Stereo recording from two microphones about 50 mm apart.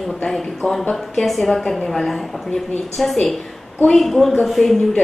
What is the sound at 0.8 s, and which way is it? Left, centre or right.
A woman's voice, centre.